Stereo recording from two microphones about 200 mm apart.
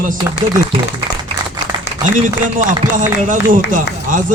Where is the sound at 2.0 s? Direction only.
40° right (ahead or behind).